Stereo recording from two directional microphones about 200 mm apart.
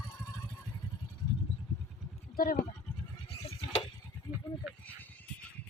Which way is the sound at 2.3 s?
45° left (ahead or behind).